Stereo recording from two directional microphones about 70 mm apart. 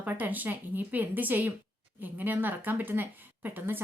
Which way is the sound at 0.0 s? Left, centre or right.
Right.